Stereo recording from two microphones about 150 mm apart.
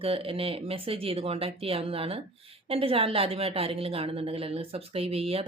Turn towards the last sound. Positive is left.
turn(degrees=-40)  # may be behind; listen again after turning